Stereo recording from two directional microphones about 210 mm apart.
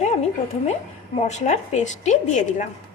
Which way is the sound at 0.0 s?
30° left (ahead or behind).